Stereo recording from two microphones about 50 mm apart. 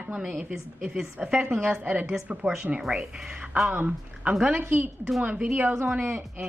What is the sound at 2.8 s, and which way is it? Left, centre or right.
Speech, centre.